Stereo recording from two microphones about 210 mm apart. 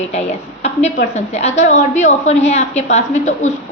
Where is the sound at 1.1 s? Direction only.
30° left (ahead or behind).